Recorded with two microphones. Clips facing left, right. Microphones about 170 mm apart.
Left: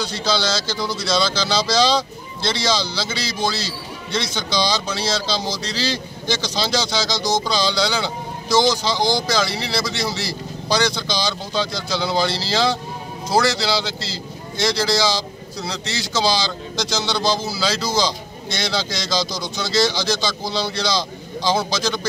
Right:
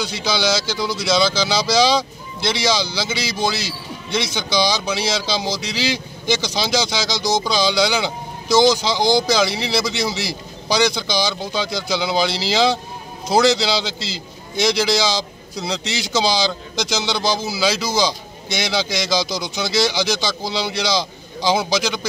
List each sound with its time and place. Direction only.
0.0 s a man's voice: 15° right (ahead or behind)